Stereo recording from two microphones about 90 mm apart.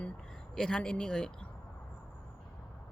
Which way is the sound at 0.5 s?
5° left (ahead or behind).